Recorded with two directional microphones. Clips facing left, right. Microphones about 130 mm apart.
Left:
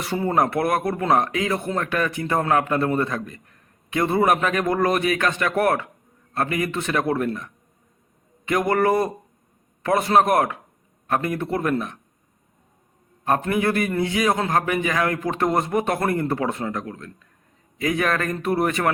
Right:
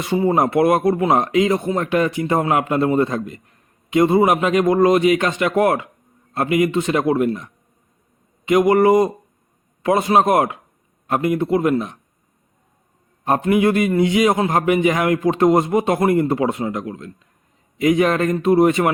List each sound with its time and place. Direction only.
0.0 s a man's voice: 15° right (ahead or behind)
13.2 s a man's voice: 20° right (ahead or behind)